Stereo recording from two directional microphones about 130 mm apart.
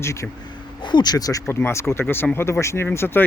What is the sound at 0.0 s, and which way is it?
Speech, 20° left (ahead or behind).